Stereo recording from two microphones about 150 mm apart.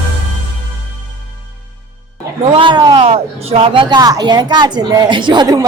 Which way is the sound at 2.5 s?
35° right (ahead or behind).